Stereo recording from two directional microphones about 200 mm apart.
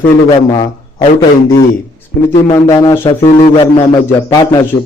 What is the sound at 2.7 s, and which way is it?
Speech, 25° left (ahead or behind).